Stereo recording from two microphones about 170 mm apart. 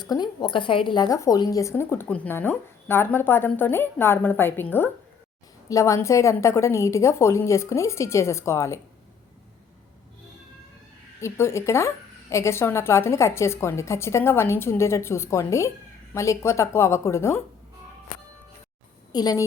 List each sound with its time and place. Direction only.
0.0 s a woman's voice: 25° left (ahead or behind)
11.2 s speech: 15° left (ahead or behind)
19.1 s a woman's voice: 20° left (ahead or behind)